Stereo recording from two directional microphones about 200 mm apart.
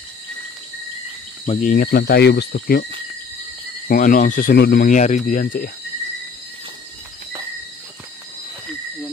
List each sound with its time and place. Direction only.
1.4 s speech: 35° left (ahead or behind); by 2.9 s 55° left (ahead or behind)
3.9 s speech: 45° left (ahead or behind)